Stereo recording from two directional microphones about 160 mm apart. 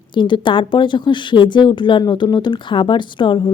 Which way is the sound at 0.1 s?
30° left (ahead or behind).